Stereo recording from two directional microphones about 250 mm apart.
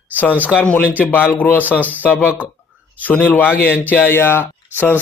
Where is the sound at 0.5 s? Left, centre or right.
Centre.